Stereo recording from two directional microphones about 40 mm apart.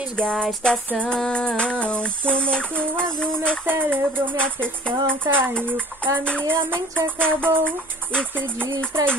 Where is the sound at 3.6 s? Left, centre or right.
Right.